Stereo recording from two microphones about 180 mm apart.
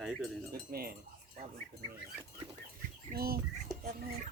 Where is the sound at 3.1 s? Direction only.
55° right (ahead or behind).